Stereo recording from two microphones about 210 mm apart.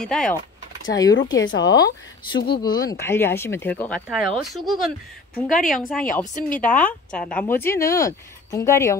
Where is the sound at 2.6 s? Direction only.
20° left (ahead or behind); by 4.7 s centre (ahead or behind).